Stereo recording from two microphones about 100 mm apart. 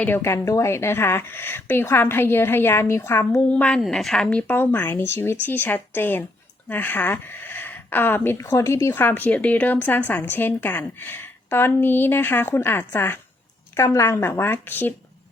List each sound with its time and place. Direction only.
0.0 s speech: 20° left (ahead or behind)
3.4 s a woman's voice: 10° left (ahead or behind)
3.8 s speech: centre (ahead or behind); by 14.9 s 20° left (ahead or behind)